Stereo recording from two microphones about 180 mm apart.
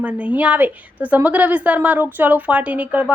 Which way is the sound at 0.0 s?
5° right (ahead or behind).